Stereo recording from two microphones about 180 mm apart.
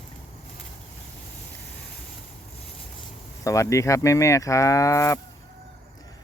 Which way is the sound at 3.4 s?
15° left (ahead or behind).